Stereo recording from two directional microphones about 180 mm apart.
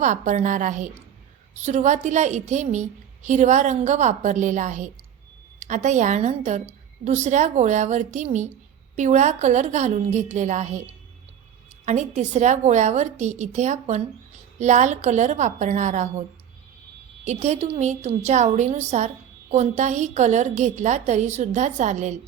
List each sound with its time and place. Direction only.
0.0 s a woman's voice: 45° right (ahead or behind)
17.2 s a woman's voice: 40° right (ahead or behind)